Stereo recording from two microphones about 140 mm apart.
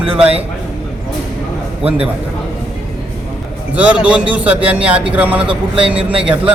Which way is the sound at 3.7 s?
10° right (ahead or behind).